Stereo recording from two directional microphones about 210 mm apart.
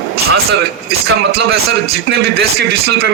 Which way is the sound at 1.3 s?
50° right (ahead or behind).